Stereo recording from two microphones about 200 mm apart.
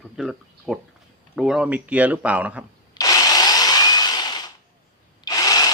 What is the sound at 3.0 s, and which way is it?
Drill, 20° left (ahead or behind).